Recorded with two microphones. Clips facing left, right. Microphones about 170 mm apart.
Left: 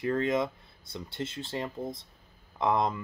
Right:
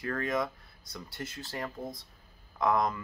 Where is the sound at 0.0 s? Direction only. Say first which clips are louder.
Left 4 dB; 25° left (ahead or behind).